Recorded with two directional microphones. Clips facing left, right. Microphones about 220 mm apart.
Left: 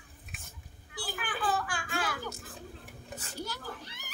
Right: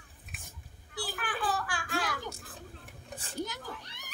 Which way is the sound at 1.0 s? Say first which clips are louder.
Right 1 dB; centre (ahead or behind).